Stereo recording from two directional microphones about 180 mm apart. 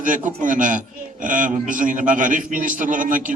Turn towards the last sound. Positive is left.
turn(degrees=-45)  # may be behind; listen again after turning